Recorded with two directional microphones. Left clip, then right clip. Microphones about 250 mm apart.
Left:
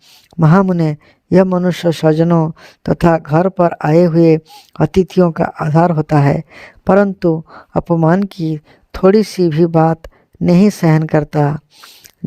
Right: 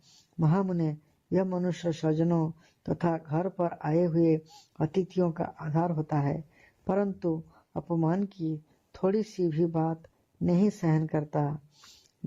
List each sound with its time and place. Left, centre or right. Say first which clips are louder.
0.3 s a man's voice: left 17 dB; left